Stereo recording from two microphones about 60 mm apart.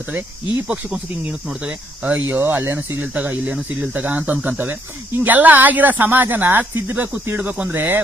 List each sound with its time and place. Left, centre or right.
0.9 s speech: right
2.2 s speech: right
3.2 s speech: right
7.7 s speech: right